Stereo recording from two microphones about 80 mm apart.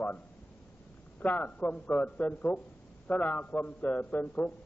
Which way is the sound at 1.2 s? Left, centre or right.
Centre.